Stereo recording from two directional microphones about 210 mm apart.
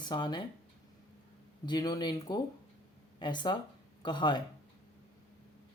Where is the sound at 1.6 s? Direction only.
20° left (ahead or behind).